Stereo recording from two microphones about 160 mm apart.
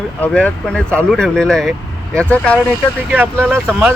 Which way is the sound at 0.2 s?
10° left (ahead or behind).